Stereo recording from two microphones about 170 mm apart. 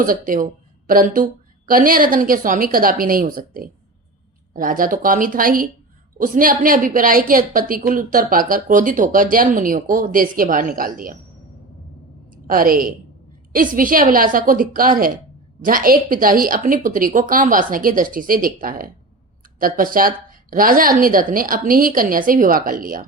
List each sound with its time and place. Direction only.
0.0 s a woman's voice: 55° right (ahead or behind)
12.5 s speech: 55° right (ahead or behind)